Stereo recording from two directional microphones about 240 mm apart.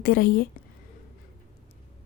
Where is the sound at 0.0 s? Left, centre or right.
Left.